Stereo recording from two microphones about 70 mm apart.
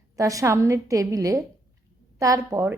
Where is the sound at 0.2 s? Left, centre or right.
Right.